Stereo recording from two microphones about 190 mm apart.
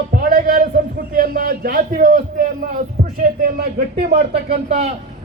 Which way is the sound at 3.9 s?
30° right (ahead or behind).